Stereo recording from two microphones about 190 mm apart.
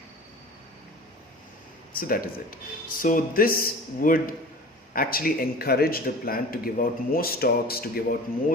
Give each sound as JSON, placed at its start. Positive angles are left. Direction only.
{"t": 1.9, "sound": "a man's voice", "side_deg": 50}